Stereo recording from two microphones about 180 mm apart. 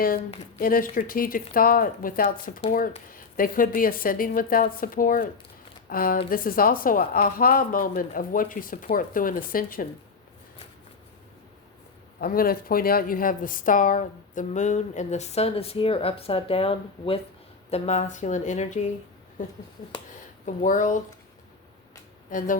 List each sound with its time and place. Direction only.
0.6 s speech: 50° left (ahead or behind)
12.2 s speech: 55° left (ahead or behind)
22.3 s speech: 45° left (ahead or behind)